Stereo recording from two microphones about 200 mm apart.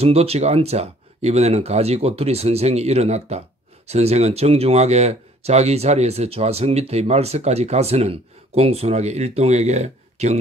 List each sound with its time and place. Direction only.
0.0 s speech: 30° right (ahead or behind)